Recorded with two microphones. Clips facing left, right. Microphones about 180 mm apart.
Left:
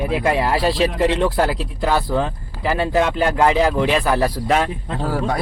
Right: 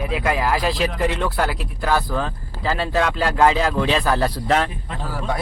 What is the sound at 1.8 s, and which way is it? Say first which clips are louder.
Speech: left 2 dB; 20° left (ahead or behind).